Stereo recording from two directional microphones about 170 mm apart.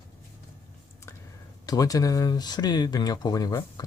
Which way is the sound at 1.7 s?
20° left (ahead or behind).